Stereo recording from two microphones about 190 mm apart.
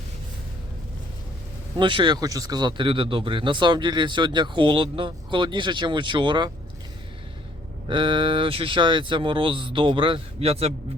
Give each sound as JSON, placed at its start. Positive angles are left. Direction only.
{"t": 1.8, "sound": "speech", "side_deg": -25}
{"t": 7.9, "sound": "speech", "side_deg": -25}